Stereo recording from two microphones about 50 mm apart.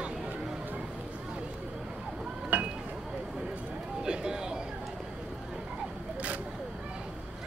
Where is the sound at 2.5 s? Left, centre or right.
Right.